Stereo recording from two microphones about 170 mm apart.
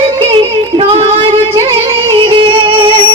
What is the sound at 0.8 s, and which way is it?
Music, 35° right (ahead or behind).